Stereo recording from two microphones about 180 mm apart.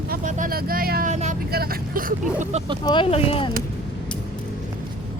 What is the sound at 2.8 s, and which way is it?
Speech, 25° left (ahead or behind).